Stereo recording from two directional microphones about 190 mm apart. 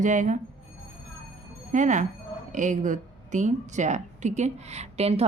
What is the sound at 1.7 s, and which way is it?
Speech, 40° right (ahead or behind).